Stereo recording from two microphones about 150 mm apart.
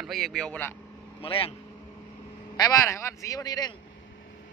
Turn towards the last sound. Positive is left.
turn(degrees=25)  # may be behind; listen again after turning